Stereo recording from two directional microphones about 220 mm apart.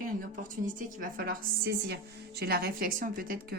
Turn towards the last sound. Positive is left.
turn(degrees=-40)  # may be behind; listen again after turning